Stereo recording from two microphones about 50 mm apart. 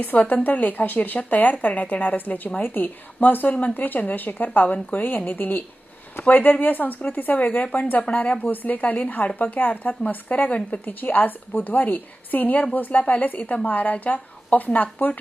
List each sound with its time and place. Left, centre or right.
0.0 s speech: left